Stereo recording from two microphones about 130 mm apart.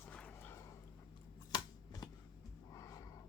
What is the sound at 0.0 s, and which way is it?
Horse, 10° left (ahead or behind).